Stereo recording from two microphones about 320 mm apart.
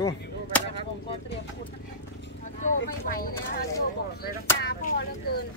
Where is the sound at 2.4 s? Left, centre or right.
Left.